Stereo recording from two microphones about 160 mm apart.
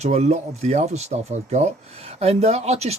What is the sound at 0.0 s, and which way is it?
Speech, 45° right (ahead or behind).